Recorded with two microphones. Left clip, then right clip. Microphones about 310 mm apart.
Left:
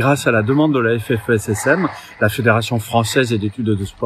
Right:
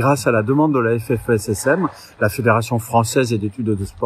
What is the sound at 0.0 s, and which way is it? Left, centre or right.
Speech, centre.